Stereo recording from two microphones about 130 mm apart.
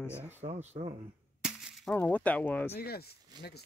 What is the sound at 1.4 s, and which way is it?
Crushing, 5° right (ahead or behind).